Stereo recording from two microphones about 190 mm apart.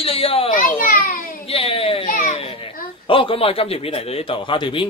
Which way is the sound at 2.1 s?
45° left (ahead or behind).